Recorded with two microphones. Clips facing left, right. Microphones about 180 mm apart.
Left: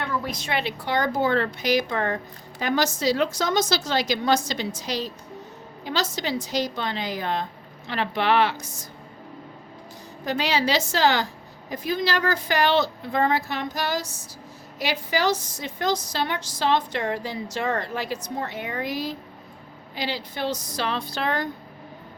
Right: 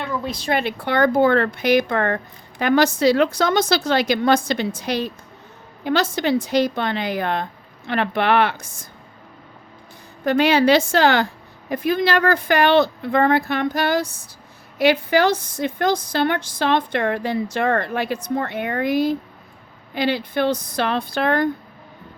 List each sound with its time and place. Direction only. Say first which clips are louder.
0.2 s speech: right 5 dB; 30° right (ahead or behind)
0.5 s speech: right 5 dB; 55° right (ahead or behind)
10.2 s speech: right 9 dB; 55° right (ahead or behind)